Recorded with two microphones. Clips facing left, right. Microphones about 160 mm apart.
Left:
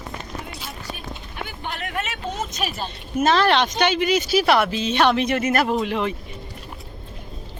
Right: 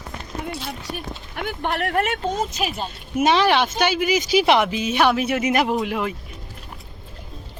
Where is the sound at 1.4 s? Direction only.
60° right (ahead or behind).